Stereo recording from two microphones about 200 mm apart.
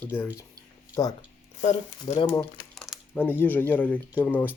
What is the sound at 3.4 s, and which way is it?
Speech, 10° left (ahead or behind).